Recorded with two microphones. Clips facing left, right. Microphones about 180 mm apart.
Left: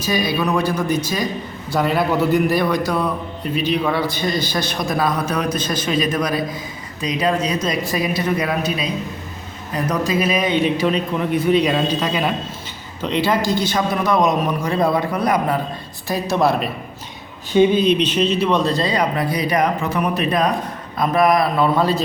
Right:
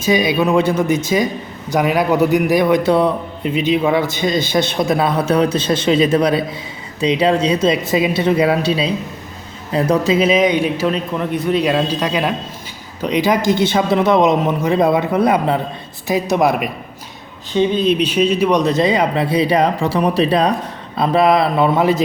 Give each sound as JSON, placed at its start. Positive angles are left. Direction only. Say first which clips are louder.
{"t": 0.1, "sound": "a man's voice", "louder": "right 5 dB", "side_deg": -20}
{"t": 9.9, "sound": "speech", "louder": "right 5 dB", "side_deg": -25}
{"t": 10.8, "sound": "a man's voice", "louder": "right 1 dB", "side_deg": 0}
{"t": 17.7, "sound": "speech", "louder": "right 1 dB", "side_deg": -5}